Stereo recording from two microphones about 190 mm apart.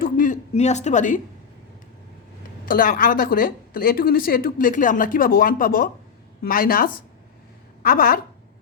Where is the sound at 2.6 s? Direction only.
50° left (ahead or behind).